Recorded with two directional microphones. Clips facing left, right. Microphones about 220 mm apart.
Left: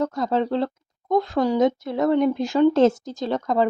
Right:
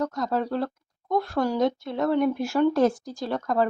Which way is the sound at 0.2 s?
25° left (ahead or behind).